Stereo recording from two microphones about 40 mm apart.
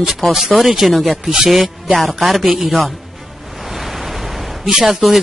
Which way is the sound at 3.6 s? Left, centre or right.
Centre.